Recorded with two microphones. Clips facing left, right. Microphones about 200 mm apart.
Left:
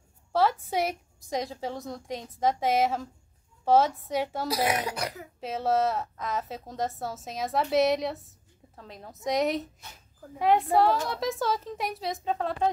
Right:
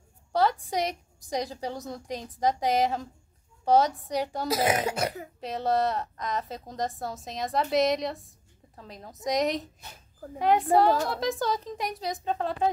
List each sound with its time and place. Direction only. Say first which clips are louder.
0.3 s a woman's voice: even; 5° left (ahead or behind)
4.5 s speech: right 5 dB; 25° right (ahead or behind)
5.4 s a woman's voice: left 1 dB; centre (ahead or behind)